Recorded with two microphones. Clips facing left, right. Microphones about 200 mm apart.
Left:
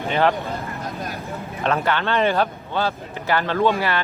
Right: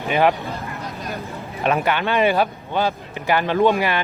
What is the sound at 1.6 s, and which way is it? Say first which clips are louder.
Speech: right 2 dB; 15° right (ahead or behind).